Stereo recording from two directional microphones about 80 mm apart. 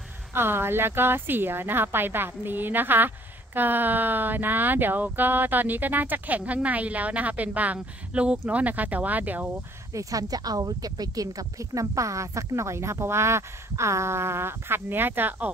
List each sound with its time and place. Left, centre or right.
0.3 s speech: right
9.9 s speech: right